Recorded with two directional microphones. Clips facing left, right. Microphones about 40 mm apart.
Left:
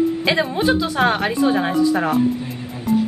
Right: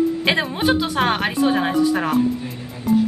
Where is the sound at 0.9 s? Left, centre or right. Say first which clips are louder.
Left 1 dB; centre.